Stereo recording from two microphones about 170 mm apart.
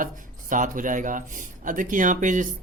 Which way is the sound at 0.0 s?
50° right (ahead or behind).